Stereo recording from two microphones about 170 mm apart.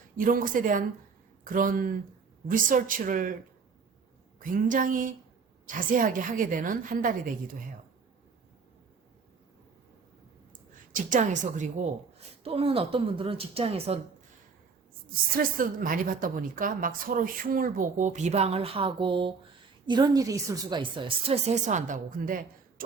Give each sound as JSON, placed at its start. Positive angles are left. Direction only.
{"t": 0.2, "sound": "a woman's voice", "side_deg": -55}
{"t": 4.4, "sound": "a woman's voice", "side_deg": -50}
{"t": 10.9, "sound": "a woman's voice", "side_deg": -50}
{"t": 12.4, "sound": "speech", "side_deg": -35}
{"t": 15.4, "sound": "a woman's voice", "side_deg": -55}